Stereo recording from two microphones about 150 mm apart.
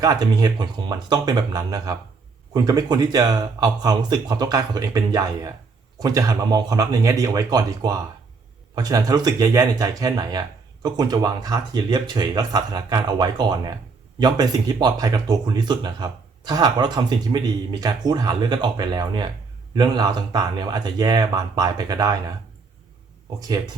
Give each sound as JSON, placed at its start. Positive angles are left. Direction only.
{"t": 0.0, "sound": "speech", "side_deg": -25}